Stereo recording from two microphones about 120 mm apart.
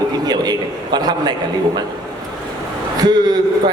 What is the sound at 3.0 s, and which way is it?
Speech, 35° right (ahead or behind).